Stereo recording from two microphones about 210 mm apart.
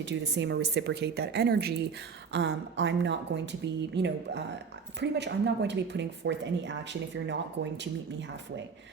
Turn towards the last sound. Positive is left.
turn(degrees=-60)  # may be behind; listen again after turning